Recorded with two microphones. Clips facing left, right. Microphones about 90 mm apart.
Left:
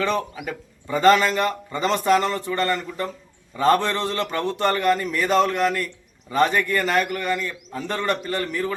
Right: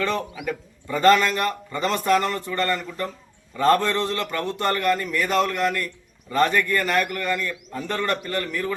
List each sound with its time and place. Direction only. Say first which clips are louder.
0.9 s a man's voice: left 1 dB; 20° left (ahead or behind)